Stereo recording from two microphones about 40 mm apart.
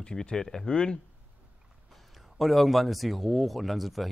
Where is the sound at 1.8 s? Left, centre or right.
Centre.